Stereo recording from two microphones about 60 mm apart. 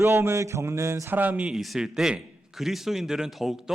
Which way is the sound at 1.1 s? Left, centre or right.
Right.